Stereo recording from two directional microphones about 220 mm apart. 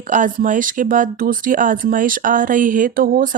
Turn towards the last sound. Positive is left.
turn(degrees=-40)  # may be behind; listen again after turning